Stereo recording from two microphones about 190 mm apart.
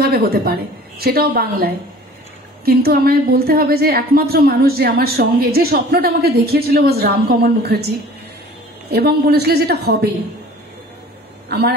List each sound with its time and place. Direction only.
0.0 s a woman's voice: 55° right (ahead or behind)
8.9 s a woman's voice: 55° right (ahead or behind)
11.4 s a man's voice: 55° right (ahead or behind)